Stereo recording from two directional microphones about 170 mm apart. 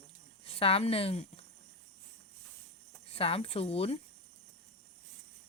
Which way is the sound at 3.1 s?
35° left (ahead or behind).